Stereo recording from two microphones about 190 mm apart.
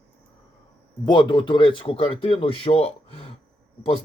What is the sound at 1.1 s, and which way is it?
A man's voice, 25° left (ahead or behind).